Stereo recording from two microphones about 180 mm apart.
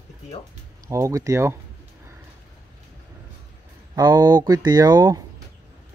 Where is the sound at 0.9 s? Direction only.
15° right (ahead or behind).